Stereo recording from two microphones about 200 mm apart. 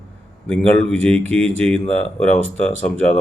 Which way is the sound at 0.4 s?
5° left (ahead or behind).